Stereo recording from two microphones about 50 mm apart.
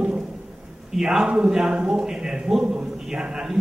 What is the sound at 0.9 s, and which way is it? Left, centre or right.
A man's voice, centre.